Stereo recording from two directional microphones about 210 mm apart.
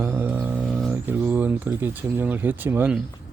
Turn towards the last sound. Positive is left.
turn(degrees=-10)  # may be behind; listen again after turning